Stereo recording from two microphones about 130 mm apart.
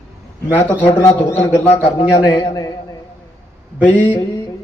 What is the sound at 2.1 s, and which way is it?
Speech, 30° left (ahead or behind).